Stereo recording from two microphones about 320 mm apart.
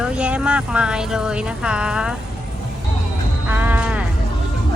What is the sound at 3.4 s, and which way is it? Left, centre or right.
Music, centre.